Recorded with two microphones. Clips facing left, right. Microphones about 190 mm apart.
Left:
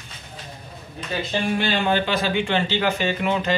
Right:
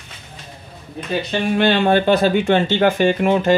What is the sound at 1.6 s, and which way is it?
Speech, 55° right (ahead or behind).